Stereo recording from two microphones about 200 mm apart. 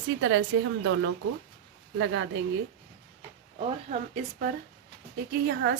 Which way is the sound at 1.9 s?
70° right (ahead or behind).